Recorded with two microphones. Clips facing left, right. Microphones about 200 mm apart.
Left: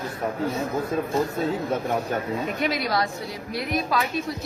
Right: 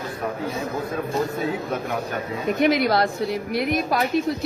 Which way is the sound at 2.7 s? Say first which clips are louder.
Right 8 dB; 60° right (ahead or behind).